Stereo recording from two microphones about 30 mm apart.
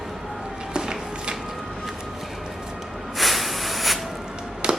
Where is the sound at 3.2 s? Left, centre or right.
Centre.